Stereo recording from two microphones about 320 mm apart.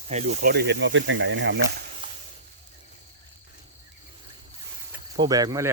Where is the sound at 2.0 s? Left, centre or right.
Centre.